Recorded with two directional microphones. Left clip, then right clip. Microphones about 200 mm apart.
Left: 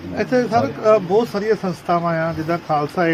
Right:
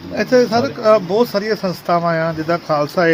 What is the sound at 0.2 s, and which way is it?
Speech, 40° right (ahead or behind).